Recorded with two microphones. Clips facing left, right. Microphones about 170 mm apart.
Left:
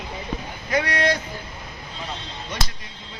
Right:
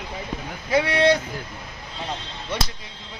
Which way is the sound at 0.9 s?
25° right (ahead or behind).